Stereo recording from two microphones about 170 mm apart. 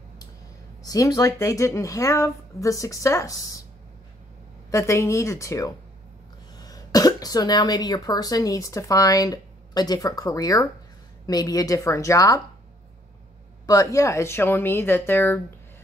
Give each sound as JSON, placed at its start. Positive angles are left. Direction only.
{"t": 0.8, "sound": "speech", "side_deg": 20}
{"t": 4.6, "sound": "speech", "side_deg": 15}
{"t": 13.7, "sound": "speech", "side_deg": 20}